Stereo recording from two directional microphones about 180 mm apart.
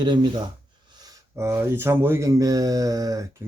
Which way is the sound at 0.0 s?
25° right (ahead or behind).